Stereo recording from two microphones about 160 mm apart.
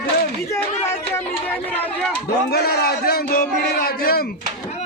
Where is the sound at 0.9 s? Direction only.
15° left (ahead or behind).